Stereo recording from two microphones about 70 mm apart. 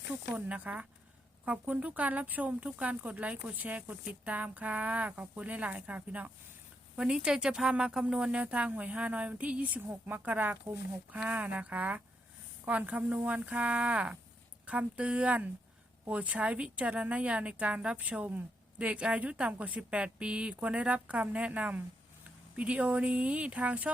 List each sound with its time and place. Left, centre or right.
0.3 s a woman's voice: right